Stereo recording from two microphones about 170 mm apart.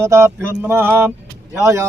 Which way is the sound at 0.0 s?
15° right (ahead or behind).